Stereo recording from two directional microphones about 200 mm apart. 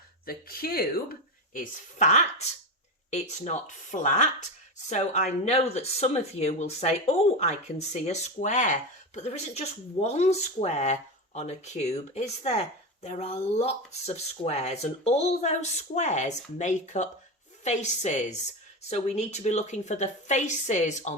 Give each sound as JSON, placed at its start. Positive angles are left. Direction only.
{"t": 0.3, "sound": "speech", "side_deg": 45}
{"t": 1.5, "sound": "speech", "side_deg": 35}